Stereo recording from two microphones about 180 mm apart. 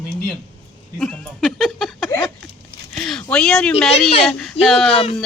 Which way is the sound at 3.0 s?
5° left (ahead or behind).